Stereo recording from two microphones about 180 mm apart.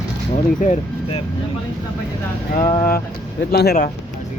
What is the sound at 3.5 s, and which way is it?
Speech, 60° left (ahead or behind).